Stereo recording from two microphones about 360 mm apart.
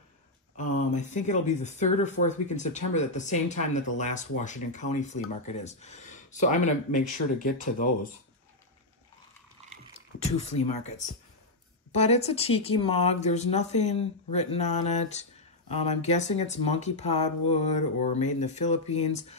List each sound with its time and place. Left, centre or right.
0.9 s speech: centre
9.9 s speech: centre